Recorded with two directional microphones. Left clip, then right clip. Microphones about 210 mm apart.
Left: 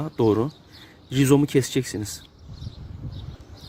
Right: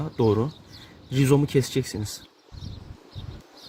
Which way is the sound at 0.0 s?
40° left (ahead or behind).